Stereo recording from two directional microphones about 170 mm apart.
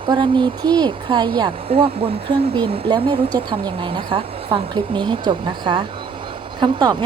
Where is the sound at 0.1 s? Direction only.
25° right (ahead or behind).